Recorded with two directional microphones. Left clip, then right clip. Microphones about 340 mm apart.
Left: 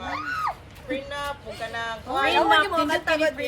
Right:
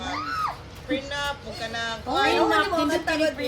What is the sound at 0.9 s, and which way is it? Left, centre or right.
Speech, centre.